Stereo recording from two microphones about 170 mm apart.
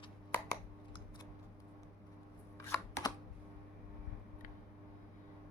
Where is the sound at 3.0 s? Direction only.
20° left (ahead or behind).